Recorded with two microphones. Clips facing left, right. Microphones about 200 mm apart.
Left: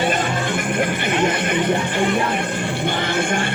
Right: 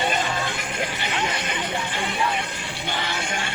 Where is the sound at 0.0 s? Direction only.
50° left (ahead or behind).